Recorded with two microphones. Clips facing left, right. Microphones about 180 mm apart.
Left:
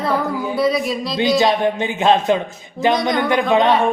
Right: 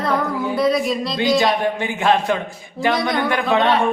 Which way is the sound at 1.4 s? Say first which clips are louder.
Left 2 dB; 20° left (ahead or behind).